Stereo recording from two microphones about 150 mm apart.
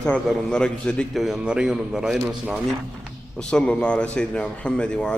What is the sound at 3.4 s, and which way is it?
A man's voice, 5° left (ahead or behind).